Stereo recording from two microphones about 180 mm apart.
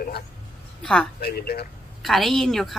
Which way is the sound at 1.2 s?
60° left (ahead or behind).